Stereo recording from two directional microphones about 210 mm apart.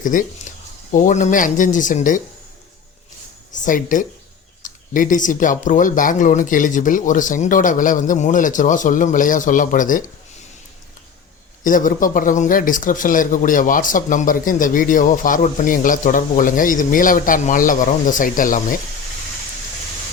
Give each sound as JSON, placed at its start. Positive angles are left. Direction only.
{"t": 0.0, "sound": "speech", "side_deg": 40}
{"t": 0.5, "sound": "a sound", "side_deg": 35}
{"t": 0.9, "sound": "speech", "side_deg": 35}
{"t": 3.5, "sound": "speech", "side_deg": 40}
{"t": 11.6, "sound": "speech", "side_deg": 40}